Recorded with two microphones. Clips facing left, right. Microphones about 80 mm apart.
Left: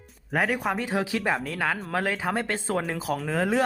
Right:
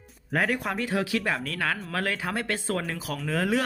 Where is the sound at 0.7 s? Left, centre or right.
Centre.